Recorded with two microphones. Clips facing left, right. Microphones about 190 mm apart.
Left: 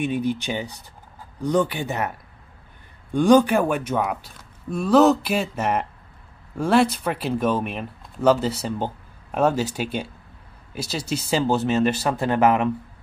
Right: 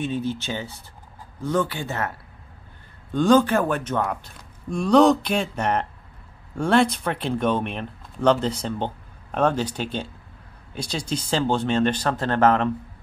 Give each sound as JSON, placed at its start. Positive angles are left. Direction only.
{"t": 0.0, "sound": "speech", "side_deg": 15}